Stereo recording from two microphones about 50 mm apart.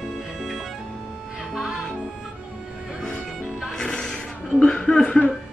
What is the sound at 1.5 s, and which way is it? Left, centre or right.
Music, centre.